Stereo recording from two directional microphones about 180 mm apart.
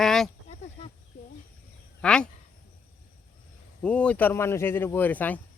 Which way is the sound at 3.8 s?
5° left (ahead or behind).